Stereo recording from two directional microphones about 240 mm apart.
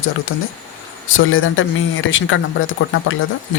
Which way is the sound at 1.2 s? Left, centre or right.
Left.